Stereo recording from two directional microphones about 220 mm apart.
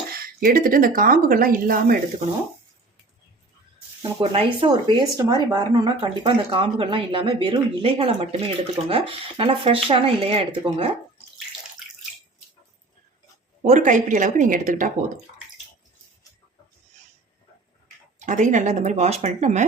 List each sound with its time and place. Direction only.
0.1 s speech: 40° right (ahead or behind)
4.0 s a woman's voice: 25° right (ahead or behind)
13.7 s speech: 35° right (ahead or behind)
18.2 s speech: 35° right (ahead or behind)